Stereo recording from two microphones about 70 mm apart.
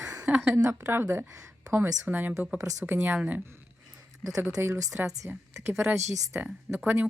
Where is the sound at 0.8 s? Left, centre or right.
Right.